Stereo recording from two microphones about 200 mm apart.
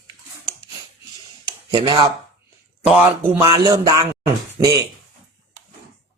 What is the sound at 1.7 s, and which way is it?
Speech, 25° right (ahead or behind).